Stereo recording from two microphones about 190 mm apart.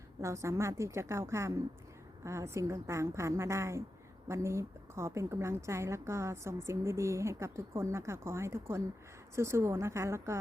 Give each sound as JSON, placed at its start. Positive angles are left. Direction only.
{"t": 0.2, "sound": "a woman's voice", "side_deg": -15}